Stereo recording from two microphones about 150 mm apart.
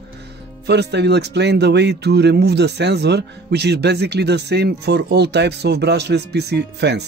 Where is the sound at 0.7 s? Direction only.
90° right.